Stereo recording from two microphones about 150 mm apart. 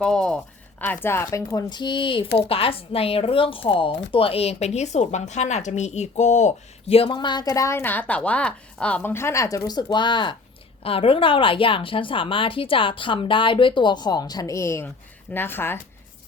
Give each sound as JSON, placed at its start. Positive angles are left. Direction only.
{"t": 0.0, "sound": "a woman's voice", "side_deg": 5}